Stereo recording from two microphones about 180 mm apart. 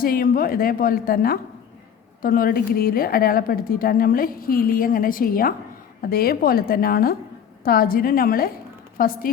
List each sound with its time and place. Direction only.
0.0 s a woman's voice: 55° left (ahead or behind)